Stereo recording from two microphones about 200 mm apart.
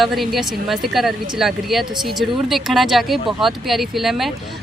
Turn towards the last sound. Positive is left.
turn(degrees=0)  # may be behind; listen again after turning